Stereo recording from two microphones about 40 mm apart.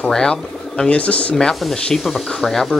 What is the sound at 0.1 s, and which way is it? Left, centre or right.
Speech, centre.